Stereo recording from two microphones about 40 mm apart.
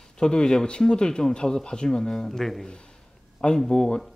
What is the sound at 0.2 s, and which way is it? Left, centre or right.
Speech, centre.